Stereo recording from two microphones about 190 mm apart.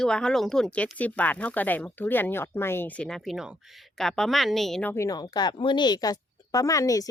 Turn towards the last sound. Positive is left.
turn(degrees=15)  # may be behind; listen again after turning